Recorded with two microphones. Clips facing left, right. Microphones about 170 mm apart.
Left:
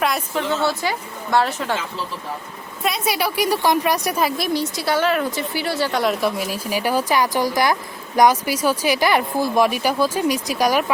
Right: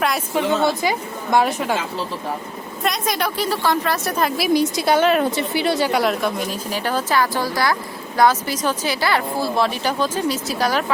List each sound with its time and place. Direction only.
0.3 s a woman's voice: 15° right (ahead or behind)
2.8 s speech: 5° left (ahead or behind)
4.4 s a woman's voice: 10° right (ahead or behind)
5.9 s speech: centre (ahead or behind)